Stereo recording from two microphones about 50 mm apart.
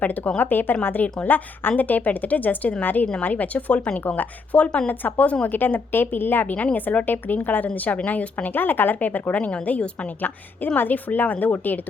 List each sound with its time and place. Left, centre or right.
0.0 s a woman's voice: left
5.5 s a woman's voice: left
6.5 s a woman's voice: left
10.2 s a woman's voice: left